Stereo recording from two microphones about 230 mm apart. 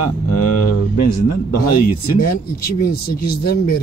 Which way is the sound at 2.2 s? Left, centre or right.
Left.